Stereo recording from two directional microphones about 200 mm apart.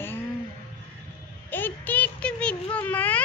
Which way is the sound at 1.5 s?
10° left (ahead or behind).